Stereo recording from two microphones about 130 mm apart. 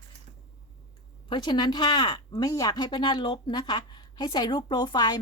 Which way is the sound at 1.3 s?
35° left (ahead or behind).